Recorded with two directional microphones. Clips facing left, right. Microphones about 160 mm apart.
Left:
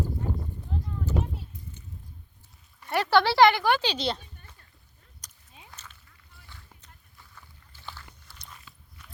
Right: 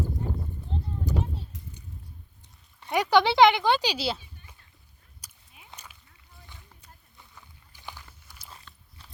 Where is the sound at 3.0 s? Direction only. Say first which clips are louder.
Right 1 dB; 15° right (ahead or behind).